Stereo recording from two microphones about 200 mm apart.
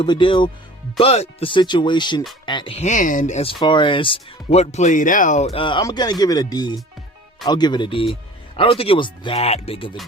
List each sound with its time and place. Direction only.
0.0 s speech: 25° left (ahead or behind)